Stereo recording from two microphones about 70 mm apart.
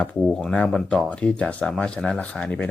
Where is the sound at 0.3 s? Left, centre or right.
Centre.